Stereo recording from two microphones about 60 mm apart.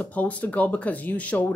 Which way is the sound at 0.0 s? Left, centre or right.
Left.